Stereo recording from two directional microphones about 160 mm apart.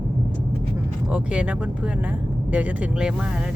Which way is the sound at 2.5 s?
5° right (ahead or behind).